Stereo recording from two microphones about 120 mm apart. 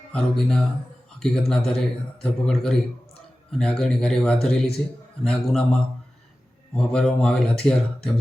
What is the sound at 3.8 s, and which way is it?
Speech, 5° left (ahead or behind).